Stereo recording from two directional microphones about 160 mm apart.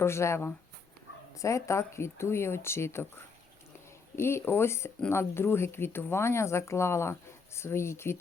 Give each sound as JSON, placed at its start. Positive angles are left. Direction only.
{"t": 0.0, "sound": "speech", "side_deg": 15}
{"t": 4.1, "sound": "speech", "side_deg": 15}